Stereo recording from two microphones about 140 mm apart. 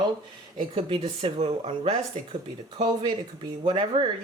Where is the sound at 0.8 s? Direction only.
40° right (ahead or behind).